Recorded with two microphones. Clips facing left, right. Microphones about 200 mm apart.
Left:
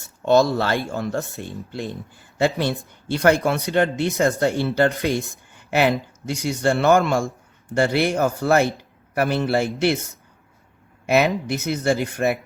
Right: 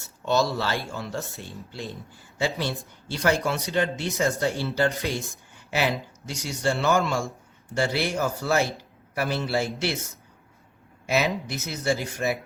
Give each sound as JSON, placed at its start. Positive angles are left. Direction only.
{"t": 0.3, "sound": "speech", "side_deg": 55}
{"t": 3.1, "sound": "speech", "side_deg": 55}